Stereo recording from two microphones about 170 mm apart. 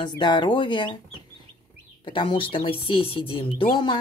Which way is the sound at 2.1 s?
30° left (ahead or behind).